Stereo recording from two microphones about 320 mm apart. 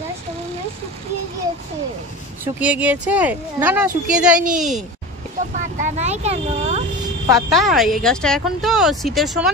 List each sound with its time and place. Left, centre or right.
2.4 s speech: centre
5.8 s speech: right
7.2 s speech: centre